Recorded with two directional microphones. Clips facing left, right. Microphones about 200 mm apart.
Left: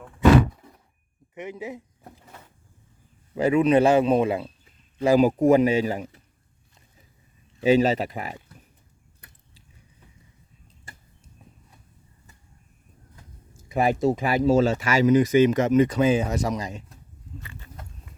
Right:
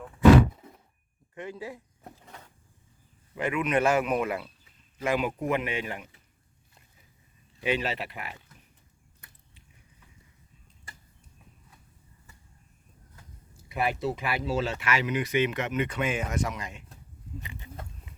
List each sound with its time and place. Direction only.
1.4 s speech: 20° left (ahead or behind)
3.3 s speech: 35° left (ahead or behind)
7.6 s speech: 40° left (ahead or behind)
13.7 s speech: 45° left (ahead or behind)
17.4 s a sound: 20° right (ahead or behind)